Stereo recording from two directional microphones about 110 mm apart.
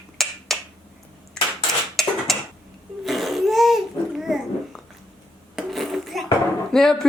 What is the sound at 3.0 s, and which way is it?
Babbling, centre (ahead or behind).